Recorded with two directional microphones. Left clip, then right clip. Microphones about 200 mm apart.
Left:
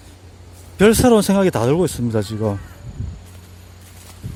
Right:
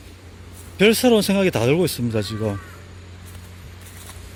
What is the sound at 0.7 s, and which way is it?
Speech, 20° left (ahead or behind).